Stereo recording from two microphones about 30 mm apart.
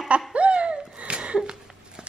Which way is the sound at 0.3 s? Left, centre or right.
Right.